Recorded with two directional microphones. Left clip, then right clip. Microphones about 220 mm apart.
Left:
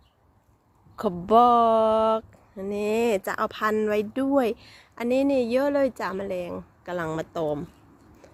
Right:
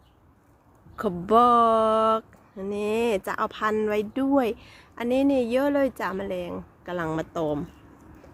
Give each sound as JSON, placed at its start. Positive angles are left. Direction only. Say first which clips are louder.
{"t": 0.9, "sound": "speech", "louder": "left 1 dB", "side_deg": 15}
{"t": 2.6, "sound": "speech", "louder": "left 1 dB", "side_deg": 20}